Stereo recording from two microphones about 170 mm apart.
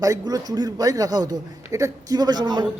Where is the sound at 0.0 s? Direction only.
20° right (ahead or behind).